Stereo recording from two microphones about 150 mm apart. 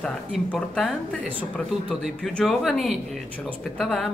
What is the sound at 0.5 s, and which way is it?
Speech, 5° left (ahead or behind).